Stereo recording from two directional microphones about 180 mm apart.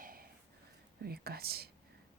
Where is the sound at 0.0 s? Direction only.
55° right (ahead or behind).